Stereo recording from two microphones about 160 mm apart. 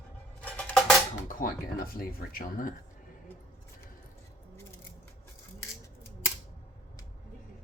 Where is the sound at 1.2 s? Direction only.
60° left (ahead or behind).